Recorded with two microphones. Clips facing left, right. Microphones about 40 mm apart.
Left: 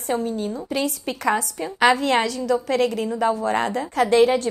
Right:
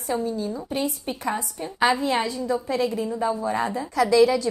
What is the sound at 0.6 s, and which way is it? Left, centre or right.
A woman's voice, left.